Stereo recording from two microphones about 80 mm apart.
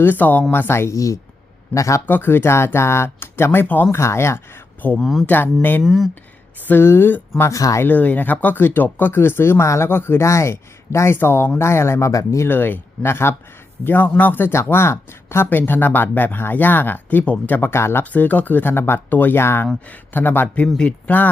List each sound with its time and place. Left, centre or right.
0.0 s speech: left
2.0 s speech: left
4.9 s speech: centre
5.2 s speech: left
5.8 s speech: centre
6.7 s speech: left
7.5 s speech: left
7.8 s speech: left
12.5 s speech: left
18.0 s speech: centre